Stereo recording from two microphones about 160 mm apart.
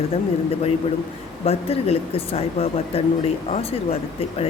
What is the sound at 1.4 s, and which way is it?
Speech, 40° left (ahead or behind).